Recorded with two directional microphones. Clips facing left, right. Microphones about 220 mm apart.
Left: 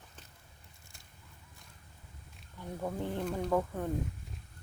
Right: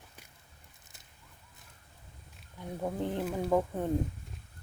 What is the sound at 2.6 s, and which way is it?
Speech, 15° right (ahead or behind).